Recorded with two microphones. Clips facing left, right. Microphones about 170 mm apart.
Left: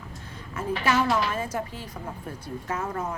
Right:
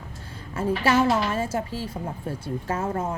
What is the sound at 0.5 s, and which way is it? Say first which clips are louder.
A woman's voice: right 3 dB; 30° right (ahead or behind).